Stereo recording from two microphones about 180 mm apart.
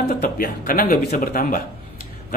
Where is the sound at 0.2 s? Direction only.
55° left (ahead or behind).